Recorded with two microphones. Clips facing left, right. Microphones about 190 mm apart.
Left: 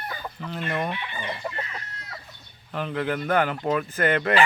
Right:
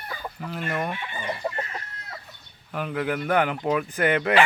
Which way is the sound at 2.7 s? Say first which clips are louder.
Even; 5° right (ahead or behind).